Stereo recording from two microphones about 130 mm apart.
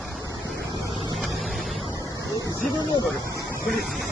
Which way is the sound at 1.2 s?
Centre (ahead or behind).